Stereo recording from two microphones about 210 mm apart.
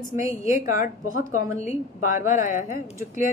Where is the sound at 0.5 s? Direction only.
40° left (ahead or behind).